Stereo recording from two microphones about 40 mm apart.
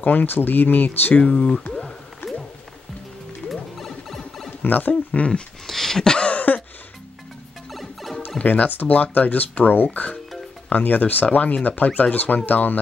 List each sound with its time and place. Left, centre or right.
0.0 s speech: left
1.2 s speech: left
1.7 s a sound: centre
3.4 s music: centre
4.6 s speech: left
5.7 s a sound: centre
6.1 s a sound: left
7.7 s music: centre
8.4 s speech: left
8.6 s speech: left
11.2 s speech: left